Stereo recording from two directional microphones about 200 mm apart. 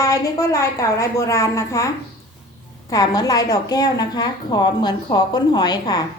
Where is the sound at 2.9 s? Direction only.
20° left (ahead or behind).